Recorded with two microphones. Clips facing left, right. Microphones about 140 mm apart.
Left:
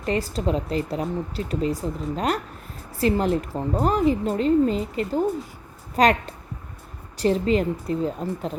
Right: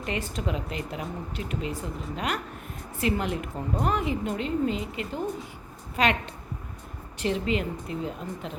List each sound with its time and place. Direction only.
0.0 s speech: 35° left (ahead or behind)